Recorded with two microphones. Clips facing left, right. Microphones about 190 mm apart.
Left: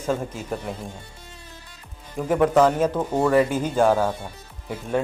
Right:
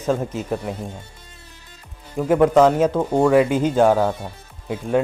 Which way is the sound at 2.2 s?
10° right (ahead or behind).